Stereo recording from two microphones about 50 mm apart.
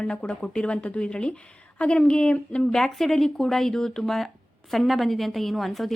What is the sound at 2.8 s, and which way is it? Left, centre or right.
A woman's voice, centre.